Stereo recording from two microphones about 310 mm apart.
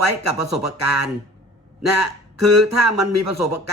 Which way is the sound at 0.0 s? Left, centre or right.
Right.